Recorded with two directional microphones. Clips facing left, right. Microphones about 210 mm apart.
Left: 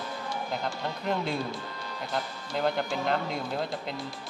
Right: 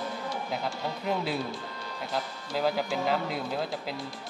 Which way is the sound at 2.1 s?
5° right (ahead or behind).